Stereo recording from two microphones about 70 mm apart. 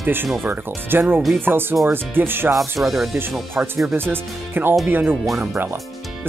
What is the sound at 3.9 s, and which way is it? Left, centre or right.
Speech, right.